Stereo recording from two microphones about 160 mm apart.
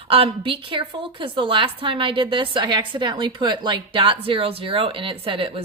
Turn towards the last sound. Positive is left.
turn(degrees=-35)  # may be behind; listen again after turning